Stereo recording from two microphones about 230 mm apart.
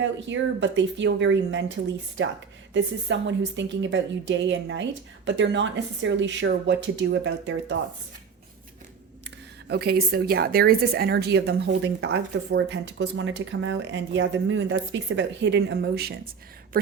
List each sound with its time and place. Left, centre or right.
0.0 s a woman's voice: right
2.7 s a woman's voice: right
9.6 s a woman's voice: right
16.7 s a sound: right